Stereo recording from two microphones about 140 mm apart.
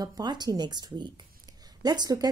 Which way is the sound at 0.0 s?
30° right (ahead or behind).